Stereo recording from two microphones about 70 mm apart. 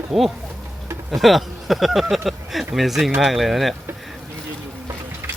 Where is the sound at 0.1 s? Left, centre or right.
Centre.